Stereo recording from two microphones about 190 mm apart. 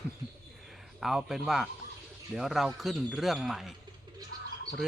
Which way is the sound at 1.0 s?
Centre (ahead or behind).